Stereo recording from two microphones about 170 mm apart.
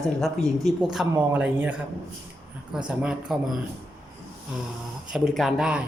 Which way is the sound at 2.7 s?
5° right (ahead or behind).